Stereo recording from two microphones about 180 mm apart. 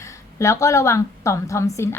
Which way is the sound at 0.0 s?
15° left (ahead or behind).